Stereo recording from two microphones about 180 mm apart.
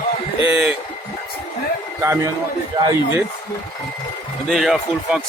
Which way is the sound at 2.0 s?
15° right (ahead or behind).